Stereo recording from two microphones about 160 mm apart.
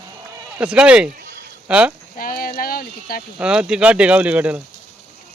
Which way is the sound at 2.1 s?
65° left (ahead or behind).